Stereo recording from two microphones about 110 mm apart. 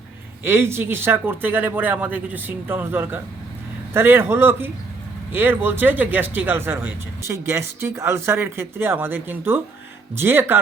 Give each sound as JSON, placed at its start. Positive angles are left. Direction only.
{"t": 0.4, "sound": "speech", "side_deg": -20}